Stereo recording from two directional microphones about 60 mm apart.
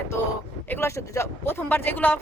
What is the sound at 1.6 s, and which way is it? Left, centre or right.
Speech, left.